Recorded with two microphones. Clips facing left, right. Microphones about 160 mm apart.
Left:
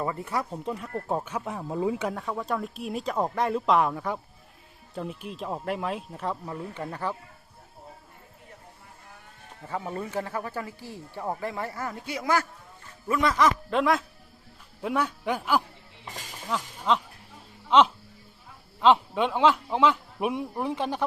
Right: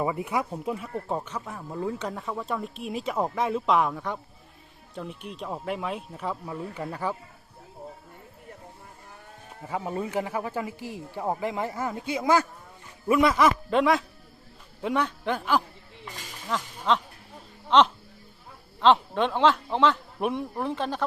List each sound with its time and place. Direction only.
0.0 s speech: 10° right (ahead or behind); by 1.4 s 5° left (ahead or behind)
1.4 s speech: 20° left (ahead or behind); by 7.2 s 10° right (ahead or behind)
9.6 s a man's voice: 15° right (ahead or behind); by 21.0 s 15° left (ahead or behind)